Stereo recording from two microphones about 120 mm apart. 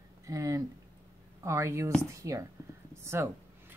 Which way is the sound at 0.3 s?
30° right (ahead or behind).